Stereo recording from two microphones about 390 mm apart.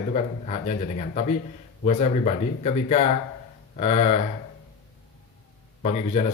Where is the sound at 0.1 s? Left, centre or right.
Centre.